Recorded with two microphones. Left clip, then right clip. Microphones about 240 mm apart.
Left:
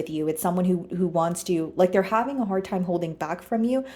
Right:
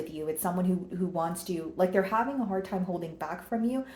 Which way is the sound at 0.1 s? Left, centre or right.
Left.